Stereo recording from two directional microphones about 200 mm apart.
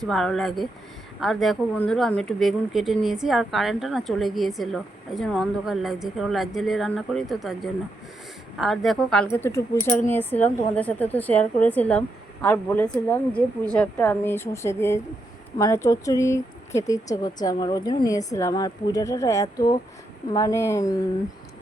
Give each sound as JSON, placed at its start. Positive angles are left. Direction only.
{"t": 0.0, "sound": "speech", "side_deg": 0}